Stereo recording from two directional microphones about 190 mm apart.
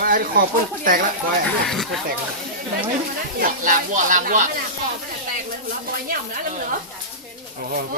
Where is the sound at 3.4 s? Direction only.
45° right (ahead or behind).